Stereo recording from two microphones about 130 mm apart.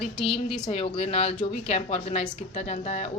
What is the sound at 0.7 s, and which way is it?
Speech, 45° left (ahead or behind).